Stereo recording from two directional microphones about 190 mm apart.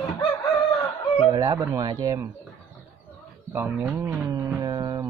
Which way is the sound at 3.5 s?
10° right (ahead or behind).